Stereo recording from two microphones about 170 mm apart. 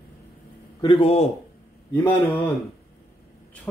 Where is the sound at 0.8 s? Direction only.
30° left (ahead or behind).